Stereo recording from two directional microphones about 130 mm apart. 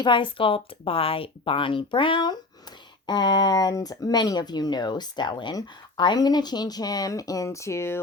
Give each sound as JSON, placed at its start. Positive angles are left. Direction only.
{"t": 0.0, "sound": "speech", "side_deg": 40}